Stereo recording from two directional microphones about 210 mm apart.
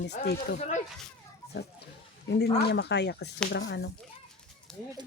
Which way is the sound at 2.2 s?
55° left (ahead or behind).